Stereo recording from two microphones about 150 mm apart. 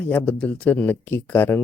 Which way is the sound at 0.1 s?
10° left (ahead or behind).